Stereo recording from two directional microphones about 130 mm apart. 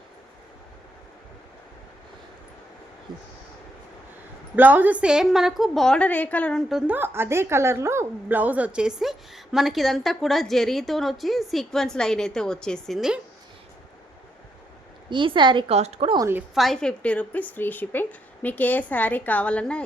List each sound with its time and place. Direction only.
4.5 s a woman's voice: 15° right (ahead or behind); by 6.6 s 10° left (ahead or behind)
6.7 s a woman's voice: 5° right (ahead or behind)
6.9 s a woman's voice: 15° right (ahead or behind); by 13.1 s centre (ahead or behind)
15.1 s a woman's voice: 40° right (ahead or behind)
15.7 s a woman's voice: 55° right (ahead or behind)
16.6 s a woman's voice: 5° left (ahead or behind)